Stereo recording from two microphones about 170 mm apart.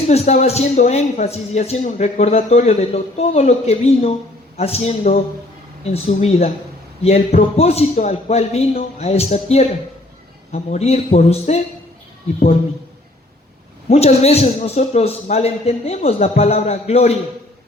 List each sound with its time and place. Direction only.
0.1 s speech: 40° left (ahead or behind)
13.9 s speech: 35° left (ahead or behind)